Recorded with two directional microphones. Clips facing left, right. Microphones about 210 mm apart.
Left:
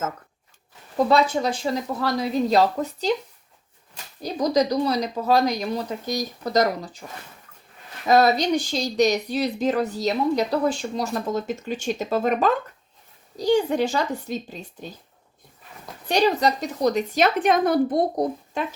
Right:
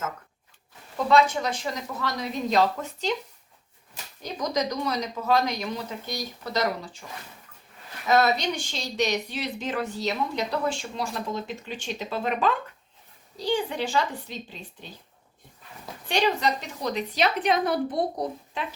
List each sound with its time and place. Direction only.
0.9 s speech: 35° left (ahead or behind)
4.2 s speech: 35° left (ahead or behind)
8.0 s a woman's voice: 35° left (ahead or behind)
16.0 s a woman's voice: 40° left (ahead or behind)